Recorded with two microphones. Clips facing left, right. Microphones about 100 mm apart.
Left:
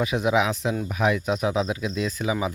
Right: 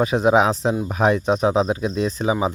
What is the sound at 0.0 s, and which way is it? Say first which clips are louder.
Speech: right 6 dB; 35° right (ahead or behind).